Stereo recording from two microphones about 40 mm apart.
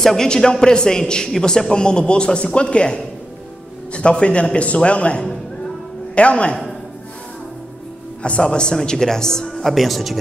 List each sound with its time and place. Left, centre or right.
0.0 s a woman's voice: centre; by 6.7 s left
8.2 s a man's voice: left
9.6 s speech: centre